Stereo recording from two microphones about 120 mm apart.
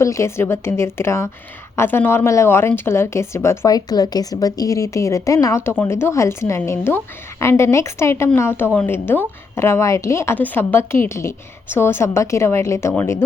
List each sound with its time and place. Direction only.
0.0 s a woman's voice: 25° left (ahead or behind)